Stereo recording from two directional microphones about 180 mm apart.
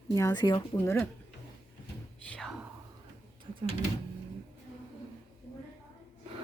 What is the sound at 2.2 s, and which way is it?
Whispering, 5° left (ahead or behind).